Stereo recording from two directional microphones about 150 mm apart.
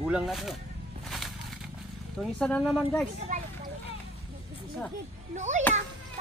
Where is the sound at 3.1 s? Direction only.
50° right (ahead or behind).